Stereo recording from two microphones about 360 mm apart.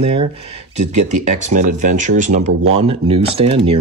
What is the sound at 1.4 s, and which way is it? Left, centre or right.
Speech, right.